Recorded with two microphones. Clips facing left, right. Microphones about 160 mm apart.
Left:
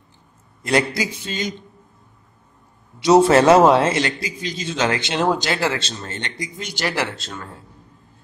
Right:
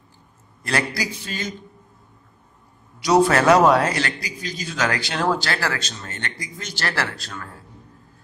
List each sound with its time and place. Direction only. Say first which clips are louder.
0.6 s a man's voice: left 5 dB; 20° left (ahead or behind)
3.0 s a man's voice: left 4 dB; 25° left (ahead or behind)